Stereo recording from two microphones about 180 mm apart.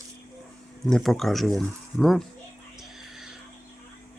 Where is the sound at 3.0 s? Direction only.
Centre (ahead or behind).